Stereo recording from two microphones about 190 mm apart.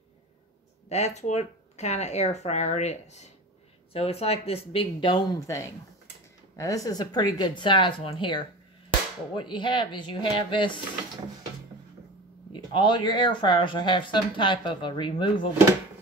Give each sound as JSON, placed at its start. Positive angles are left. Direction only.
{"t": 0.8, "sound": "speech", "side_deg": 35}
{"t": 12.7, "sound": "speech", "side_deg": 25}